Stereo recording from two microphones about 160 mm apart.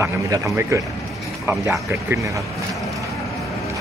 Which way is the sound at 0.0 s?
15° right (ahead or behind).